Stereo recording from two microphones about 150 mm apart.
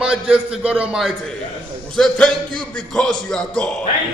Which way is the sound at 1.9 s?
5° left (ahead or behind).